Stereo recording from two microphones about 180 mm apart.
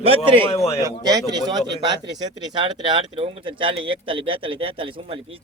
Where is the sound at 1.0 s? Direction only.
20° right (ahead or behind).